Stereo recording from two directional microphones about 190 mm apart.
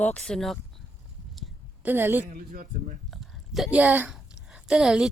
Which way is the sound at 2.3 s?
50° right (ahead or behind).